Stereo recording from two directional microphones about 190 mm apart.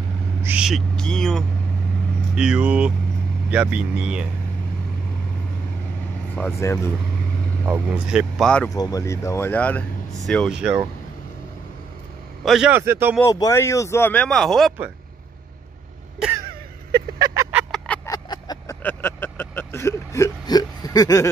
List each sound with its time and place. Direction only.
0.4 s speech: 5° right (ahead or behind)
6.3 s speech: 10° left (ahead or behind)
7.6 s speech: 10° right (ahead or behind)
8.6 s speech: 20° left (ahead or behind); by 10.9 s 5° right (ahead or behind)
12.4 s speech: 5° right (ahead or behind)
13.2 s speech: 15° left (ahead or behind)
17.2 s a sound: 15° right (ahead or behind)
17.6 s a sound: 5° left (ahead or behind)
18.1 s a sound: 20° left (ahead or behind)
18.8 s vehicle: 10° left (ahead or behind)